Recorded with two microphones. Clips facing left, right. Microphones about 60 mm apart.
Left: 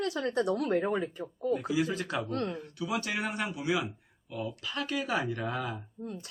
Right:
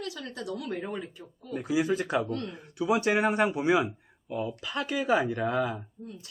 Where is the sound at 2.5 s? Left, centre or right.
Right.